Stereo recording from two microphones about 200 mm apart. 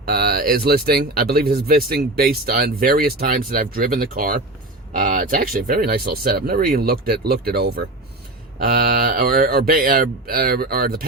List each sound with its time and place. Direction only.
0.0 s speech: 50° right (ahead or behind)